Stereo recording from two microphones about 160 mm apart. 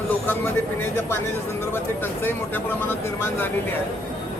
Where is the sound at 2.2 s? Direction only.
10° left (ahead or behind).